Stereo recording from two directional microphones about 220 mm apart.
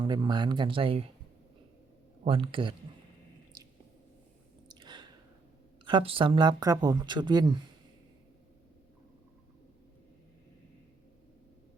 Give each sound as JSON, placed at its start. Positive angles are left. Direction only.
{"t": 0.0, "sound": "speech", "side_deg": -20}
{"t": 2.2, "sound": "speech", "side_deg": -25}
{"t": 4.7, "sound": "a sound", "side_deg": -20}
{"t": 5.8, "sound": "speech", "side_deg": -25}